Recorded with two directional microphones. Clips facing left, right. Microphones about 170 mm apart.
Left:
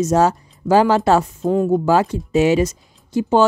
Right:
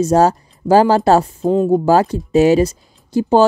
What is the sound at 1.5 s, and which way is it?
Speech, 25° right (ahead or behind).